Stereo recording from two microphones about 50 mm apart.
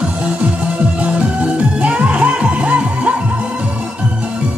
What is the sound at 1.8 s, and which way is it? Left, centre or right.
Music, right.